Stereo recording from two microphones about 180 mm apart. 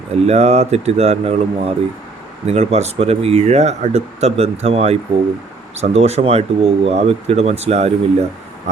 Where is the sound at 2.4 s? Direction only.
35° right (ahead or behind).